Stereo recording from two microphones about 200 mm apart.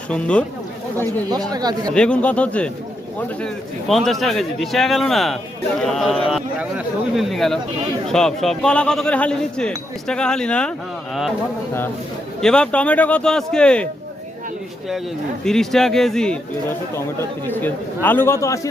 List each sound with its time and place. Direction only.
0.1 s speech: 5° left (ahead or behind)
1.5 s speech: 20° right (ahead or behind)
1.9 s speech: 5° left (ahead or behind)
12.4 s speech: 5° left (ahead or behind)
15.4 s a man's voice: centre (ahead or behind)